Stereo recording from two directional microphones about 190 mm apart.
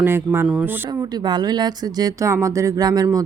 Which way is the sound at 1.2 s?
20° right (ahead or behind).